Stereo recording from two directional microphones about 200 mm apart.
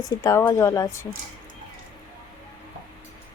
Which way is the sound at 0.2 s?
15° left (ahead or behind).